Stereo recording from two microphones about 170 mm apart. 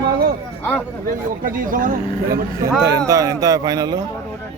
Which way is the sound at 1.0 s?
55° right (ahead or behind).